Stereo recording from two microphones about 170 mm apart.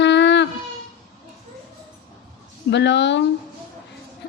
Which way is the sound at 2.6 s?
90° left.